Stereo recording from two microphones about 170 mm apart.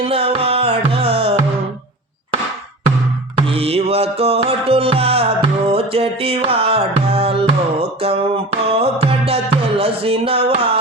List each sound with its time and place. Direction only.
0.0 s music: 35° right (ahead or behind)
3.5 s music: 35° right (ahead or behind)